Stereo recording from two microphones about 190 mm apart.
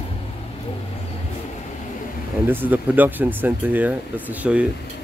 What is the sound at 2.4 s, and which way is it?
Speech, 10° right (ahead or behind).